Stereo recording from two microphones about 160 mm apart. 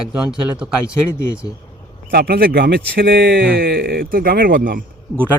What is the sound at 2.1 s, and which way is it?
A man's voice, 70° right (ahead or behind).